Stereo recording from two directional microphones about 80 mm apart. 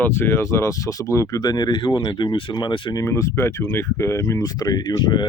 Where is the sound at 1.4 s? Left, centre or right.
Left.